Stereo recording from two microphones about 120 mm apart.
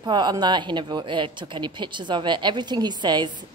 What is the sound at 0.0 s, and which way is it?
Speech, 35° right (ahead or behind).